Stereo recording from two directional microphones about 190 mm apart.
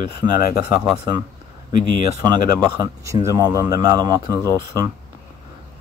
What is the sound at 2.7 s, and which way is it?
Speech, 20° right (ahead or behind).